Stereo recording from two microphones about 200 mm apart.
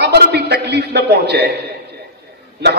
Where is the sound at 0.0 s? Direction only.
55° right (ahead or behind).